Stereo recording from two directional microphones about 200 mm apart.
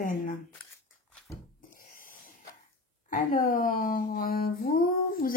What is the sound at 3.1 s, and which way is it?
Speech, 40° left (ahead or behind).